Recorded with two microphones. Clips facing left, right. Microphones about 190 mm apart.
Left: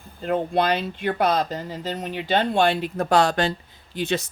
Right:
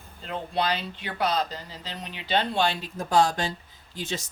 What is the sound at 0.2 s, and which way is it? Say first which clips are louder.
Speech: left 7 dB; 50° left (ahead or behind).